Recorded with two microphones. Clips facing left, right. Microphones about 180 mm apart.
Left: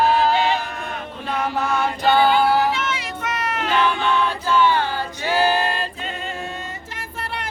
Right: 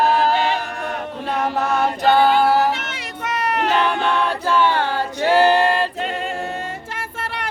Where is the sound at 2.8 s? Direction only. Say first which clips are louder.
Left 2 dB; 65° right (ahead or behind).